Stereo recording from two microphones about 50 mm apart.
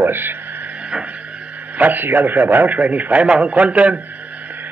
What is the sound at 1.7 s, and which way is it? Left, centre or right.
A man's voice, right.